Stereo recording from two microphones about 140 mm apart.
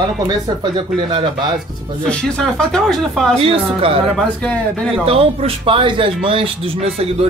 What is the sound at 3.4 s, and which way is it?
Speech, 40° right (ahead or behind).